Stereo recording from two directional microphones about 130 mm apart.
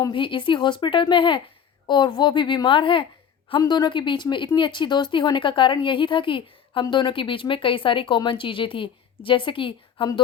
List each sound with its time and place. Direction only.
0.1 s speech: 40° left (ahead or behind)